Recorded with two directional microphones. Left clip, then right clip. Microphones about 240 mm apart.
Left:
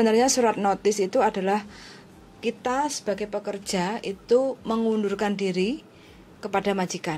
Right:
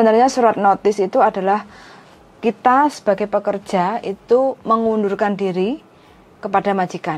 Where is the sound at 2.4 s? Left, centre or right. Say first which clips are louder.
Right 12 dB; right.